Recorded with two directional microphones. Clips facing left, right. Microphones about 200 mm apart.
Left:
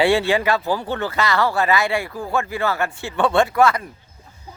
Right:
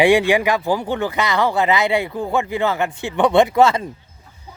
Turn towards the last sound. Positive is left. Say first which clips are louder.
# right 3 dB
turn(degrees=-25)  # may be behind; listen again after turning